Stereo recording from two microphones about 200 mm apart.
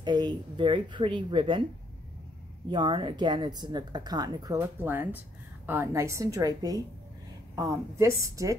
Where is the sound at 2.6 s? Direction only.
25° right (ahead or behind).